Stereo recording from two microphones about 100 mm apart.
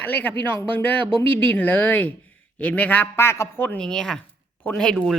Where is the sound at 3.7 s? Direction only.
5° left (ahead or behind).